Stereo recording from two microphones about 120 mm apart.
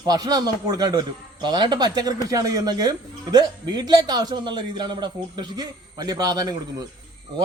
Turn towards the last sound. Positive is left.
turn(degrees=-30)  # may be behind; listen again after turning